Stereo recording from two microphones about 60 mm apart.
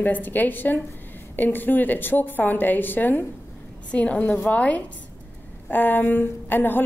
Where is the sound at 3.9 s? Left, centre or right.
Left.